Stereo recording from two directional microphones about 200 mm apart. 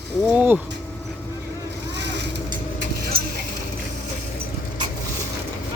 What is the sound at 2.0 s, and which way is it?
Vehicle, 60° right (ahead or behind).